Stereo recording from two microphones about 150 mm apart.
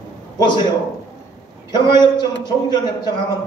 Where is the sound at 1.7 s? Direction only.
30° left (ahead or behind).